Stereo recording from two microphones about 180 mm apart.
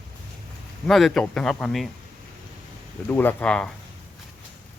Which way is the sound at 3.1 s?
10° left (ahead or behind).